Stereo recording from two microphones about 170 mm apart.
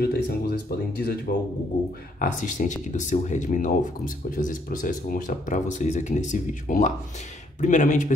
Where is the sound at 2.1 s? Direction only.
50° left (ahead or behind).